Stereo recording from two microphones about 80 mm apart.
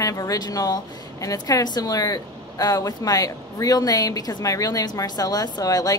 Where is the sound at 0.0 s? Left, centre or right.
Left.